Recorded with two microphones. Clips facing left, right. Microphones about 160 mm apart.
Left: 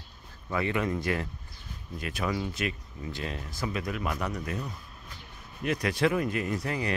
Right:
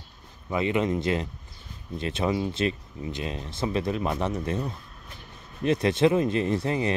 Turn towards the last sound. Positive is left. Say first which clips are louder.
# right 5 dB
turn(degrees=-25)  # may be behind; listen again after turning